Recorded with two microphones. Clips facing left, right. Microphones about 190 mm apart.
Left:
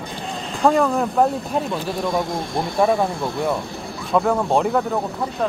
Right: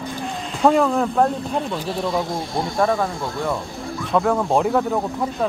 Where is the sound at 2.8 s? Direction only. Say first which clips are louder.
Left 2 dB; 15° left (ahead or behind).